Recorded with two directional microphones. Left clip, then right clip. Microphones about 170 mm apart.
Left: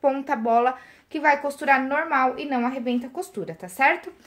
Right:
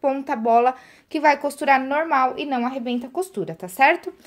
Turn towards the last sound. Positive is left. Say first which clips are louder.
# right 3 dB
turn(degrees=-55)  # may be behind; listen again after turning